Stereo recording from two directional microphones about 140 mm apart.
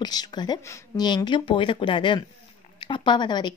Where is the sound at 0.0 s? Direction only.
30° left (ahead or behind).